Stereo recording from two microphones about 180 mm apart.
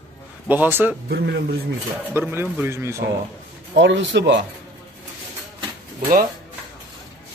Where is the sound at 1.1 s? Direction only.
65° right (ahead or behind).